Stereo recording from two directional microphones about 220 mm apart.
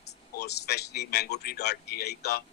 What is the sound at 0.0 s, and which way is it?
Speech, 50° left (ahead or behind).